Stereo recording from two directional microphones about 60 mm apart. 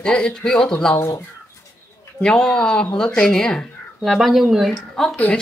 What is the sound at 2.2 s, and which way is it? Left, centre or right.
Speech, centre.